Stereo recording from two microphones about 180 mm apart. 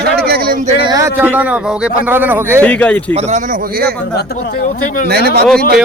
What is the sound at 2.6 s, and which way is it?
Speech, 5° left (ahead or behind).